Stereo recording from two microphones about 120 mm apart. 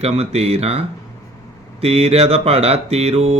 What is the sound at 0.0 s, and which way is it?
Speech, 60° right (ahead or behind).